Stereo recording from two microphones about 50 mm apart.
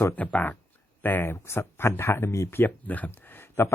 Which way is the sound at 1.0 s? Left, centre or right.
Left.